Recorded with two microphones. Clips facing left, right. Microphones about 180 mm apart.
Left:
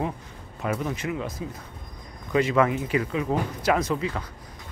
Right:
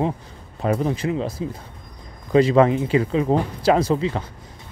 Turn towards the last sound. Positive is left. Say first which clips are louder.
# right 6 dB
turn(degrees=-30)  # may be behind; listen again after turning